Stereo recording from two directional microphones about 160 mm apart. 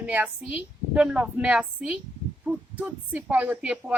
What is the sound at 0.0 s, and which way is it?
A woman's voice, 10° right (ahead or behind).